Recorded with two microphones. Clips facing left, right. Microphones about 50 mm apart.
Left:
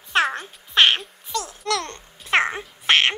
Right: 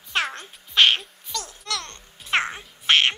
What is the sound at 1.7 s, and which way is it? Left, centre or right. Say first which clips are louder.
Babbling: left 7 dB; left.